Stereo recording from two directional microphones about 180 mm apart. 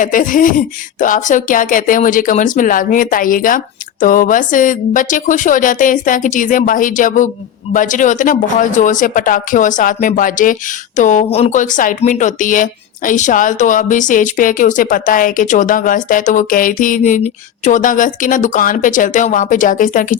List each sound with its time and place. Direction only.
0.0 s speech: 50° left (ahead or behind)